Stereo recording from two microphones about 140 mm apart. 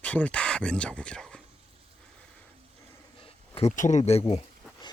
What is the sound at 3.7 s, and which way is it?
Speech, 60° left (ahead or behind).